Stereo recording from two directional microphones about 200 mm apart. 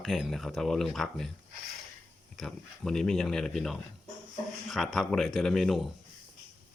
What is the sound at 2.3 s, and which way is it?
Speech, centre (ahead or behind).